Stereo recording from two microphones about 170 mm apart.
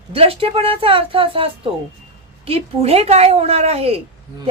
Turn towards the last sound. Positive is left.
turn(degrees=-35)  # may be behind; listen again after turning